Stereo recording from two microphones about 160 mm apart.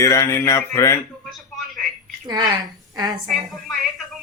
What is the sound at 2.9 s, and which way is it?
Speech, 25° right (ahead or behind).